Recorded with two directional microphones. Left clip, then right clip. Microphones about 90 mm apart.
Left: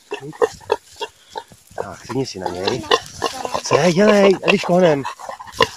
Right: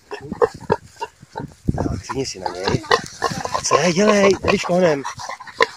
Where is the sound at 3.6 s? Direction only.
15° left (ahead or behind).